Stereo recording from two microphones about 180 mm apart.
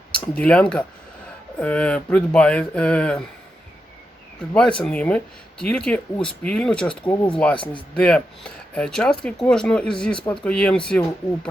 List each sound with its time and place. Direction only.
0.1 s speech: 10° left (ahead or behind)
4.8 s speech: 10° left (ahead or behind)
7.1 s speech: 15° left (ahead or behind)
7.6 s speech: 25° left (ahead or behind)
7.9 s speech: 5° left (ahead or behind)